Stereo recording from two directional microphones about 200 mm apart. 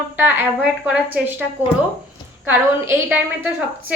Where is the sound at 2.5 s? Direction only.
10° right (ahead or behind).